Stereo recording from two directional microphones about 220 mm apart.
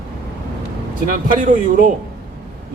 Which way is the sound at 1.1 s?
40° right (ahead or behind).